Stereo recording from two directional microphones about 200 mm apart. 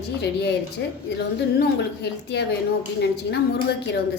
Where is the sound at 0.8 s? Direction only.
60° left (ahead or behind).